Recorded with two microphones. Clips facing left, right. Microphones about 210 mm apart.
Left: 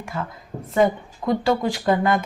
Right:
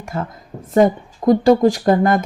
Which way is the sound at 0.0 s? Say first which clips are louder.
Right 4 dB; 45° right (ahead or behind).